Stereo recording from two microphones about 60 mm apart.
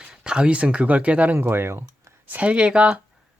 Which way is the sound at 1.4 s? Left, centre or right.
Right.